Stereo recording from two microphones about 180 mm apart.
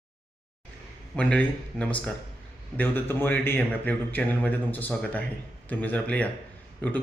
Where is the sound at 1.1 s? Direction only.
10° left (ahead or behind).